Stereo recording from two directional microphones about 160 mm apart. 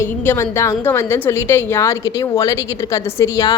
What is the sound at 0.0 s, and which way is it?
A woman's voice, 15° left (ahead or behind).